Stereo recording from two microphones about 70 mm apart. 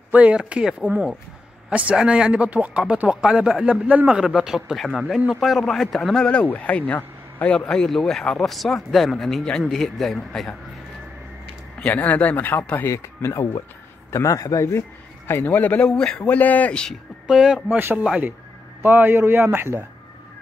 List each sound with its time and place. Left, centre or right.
0.1 s speech: centre
3.8 s speech: right
4.2 s a man's voice: centre
11.8 s speech: left
12.9 s a man's voice: left
15.9 s speech: centre
17.3 s speech: centre
17.7 s a man's voice: right